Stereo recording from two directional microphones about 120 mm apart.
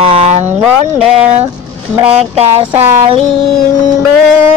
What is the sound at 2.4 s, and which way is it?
Speech, 20° right (ahead or behind).